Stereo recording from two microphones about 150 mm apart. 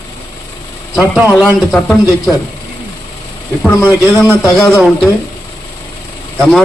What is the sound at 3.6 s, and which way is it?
Speech, 10° right (ahead or behind).